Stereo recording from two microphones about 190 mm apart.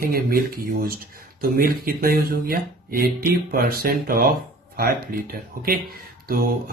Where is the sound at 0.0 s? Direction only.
50° right (ahead or behind).